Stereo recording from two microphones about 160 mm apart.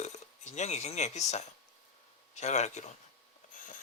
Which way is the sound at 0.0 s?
45° left (ahead or behind).